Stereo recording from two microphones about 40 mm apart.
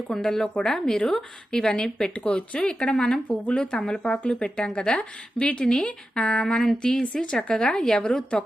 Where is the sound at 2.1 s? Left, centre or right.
Left.